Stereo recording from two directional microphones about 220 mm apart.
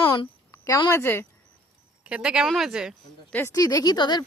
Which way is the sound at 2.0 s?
5° right (ahead or behind).